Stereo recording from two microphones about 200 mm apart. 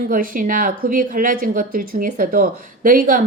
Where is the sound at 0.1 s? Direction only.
45° right (ahead or behind).